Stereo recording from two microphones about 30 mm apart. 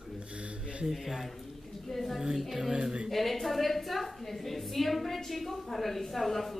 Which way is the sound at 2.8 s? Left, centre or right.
Right.